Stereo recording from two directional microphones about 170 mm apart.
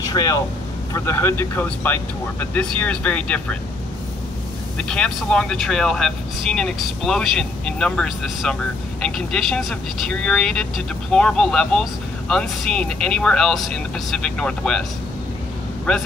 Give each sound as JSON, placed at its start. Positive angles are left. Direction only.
{"t": 0.1, "sound": "speech", "side_deg": 20}
{"t": 4.7, "sound": "speech", "side_deg": 5}
{"t": 15.9, "sound": "speech", "side_deg": 5}